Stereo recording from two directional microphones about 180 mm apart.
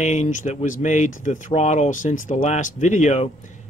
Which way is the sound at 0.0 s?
40° left (ahead or behind).